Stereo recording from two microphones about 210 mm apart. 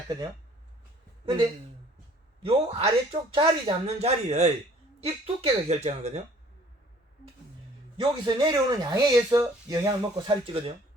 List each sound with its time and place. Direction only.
1.2 s speech: 25° right (ahead or behind)
7.9 s speech: 20° right (ahead or behind)